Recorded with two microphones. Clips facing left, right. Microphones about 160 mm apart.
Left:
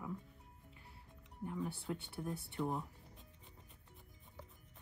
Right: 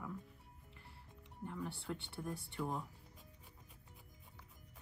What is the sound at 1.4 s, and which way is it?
Speech, 10° left (ahead or behind).